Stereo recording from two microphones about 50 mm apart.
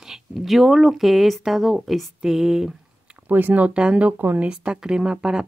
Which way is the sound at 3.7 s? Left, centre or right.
Right.